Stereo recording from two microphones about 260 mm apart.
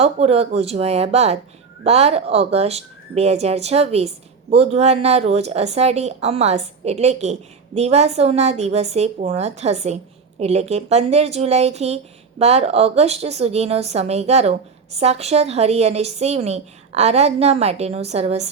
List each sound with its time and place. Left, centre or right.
0.0 s speech: right